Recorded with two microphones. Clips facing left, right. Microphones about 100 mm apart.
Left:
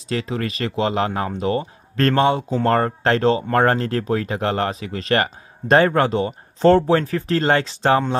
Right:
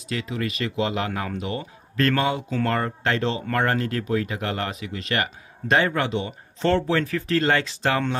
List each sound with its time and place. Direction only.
0.1 s speech: 35° left (ahead or behind)